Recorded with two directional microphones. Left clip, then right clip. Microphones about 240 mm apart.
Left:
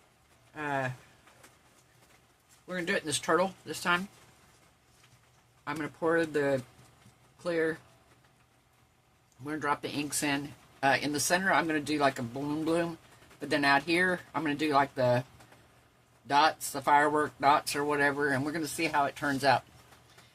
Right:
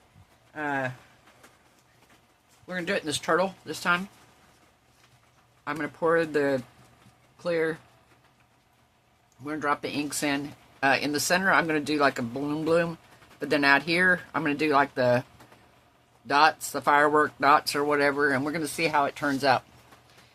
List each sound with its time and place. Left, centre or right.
0.5 s speech: centre
2.6 s speech: centre
5.6 s speech: centre
9.4 s speech: centre
16.2 s speech: right